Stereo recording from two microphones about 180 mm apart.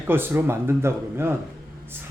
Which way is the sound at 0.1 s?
10° right (ahead or behind).